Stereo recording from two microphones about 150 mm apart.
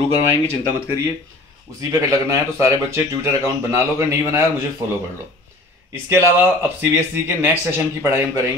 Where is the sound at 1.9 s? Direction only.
20° right (ahead or behind).